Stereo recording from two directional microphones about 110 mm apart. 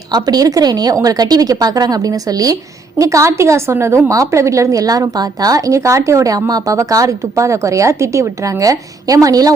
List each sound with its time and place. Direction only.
0.1 s a woman's voice: 35° right (ahead or behind)